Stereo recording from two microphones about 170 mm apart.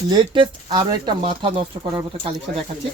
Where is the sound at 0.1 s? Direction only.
25° right (ahead or behind).